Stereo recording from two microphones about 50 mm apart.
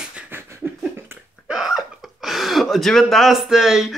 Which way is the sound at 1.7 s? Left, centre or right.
Centre.